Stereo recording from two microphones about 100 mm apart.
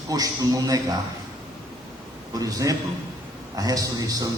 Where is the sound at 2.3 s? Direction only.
35° right (ahead or behind).